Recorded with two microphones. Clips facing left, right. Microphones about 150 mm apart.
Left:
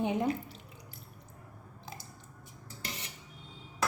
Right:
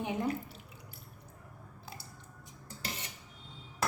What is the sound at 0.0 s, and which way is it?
Speech, 20° left (ahead or behind).